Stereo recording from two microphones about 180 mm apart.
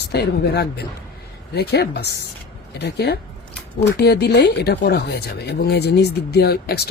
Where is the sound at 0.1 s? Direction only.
65° left (ahead or behind).